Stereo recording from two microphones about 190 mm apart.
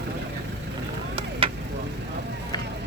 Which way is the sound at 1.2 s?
30° right (ahead or behind).